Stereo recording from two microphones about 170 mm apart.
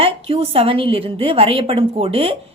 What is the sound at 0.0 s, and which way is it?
A woman's voice, 35° right (ahead or behind).